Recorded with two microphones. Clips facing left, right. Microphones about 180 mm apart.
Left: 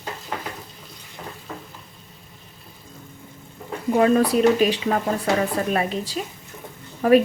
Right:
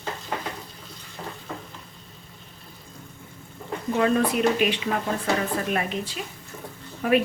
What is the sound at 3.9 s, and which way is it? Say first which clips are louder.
A woman's voice: left 5 dB; 35° left (ahead or behind).